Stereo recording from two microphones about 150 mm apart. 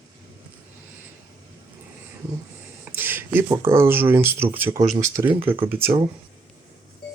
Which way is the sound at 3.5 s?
15° right (ahead or behind).